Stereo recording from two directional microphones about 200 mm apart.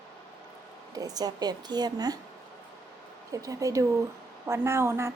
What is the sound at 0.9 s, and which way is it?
Speech, 20° right (ahead or behind).